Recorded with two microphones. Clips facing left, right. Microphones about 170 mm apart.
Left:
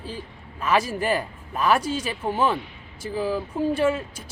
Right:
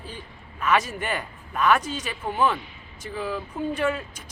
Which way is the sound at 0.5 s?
30° left (ahead or behind).